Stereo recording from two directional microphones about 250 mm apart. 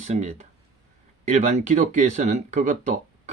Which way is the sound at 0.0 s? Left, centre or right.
Right.